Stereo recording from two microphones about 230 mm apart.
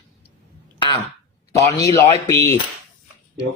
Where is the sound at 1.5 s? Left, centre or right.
Centre.